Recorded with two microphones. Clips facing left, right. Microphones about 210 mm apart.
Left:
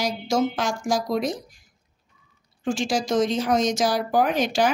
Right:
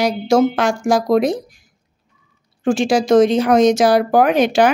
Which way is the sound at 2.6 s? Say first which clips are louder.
Right 9 dB; 65° right (ahead or behind).